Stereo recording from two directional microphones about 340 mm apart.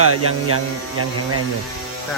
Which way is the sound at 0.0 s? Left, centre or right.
Right.